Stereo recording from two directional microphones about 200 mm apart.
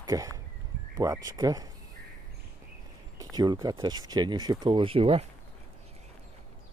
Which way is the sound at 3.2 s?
20° right (ahead or behind).